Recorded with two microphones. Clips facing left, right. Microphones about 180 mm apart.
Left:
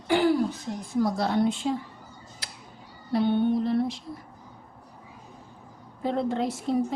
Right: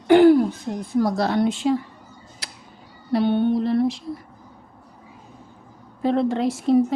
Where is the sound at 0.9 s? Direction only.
75° right (ahead or behind).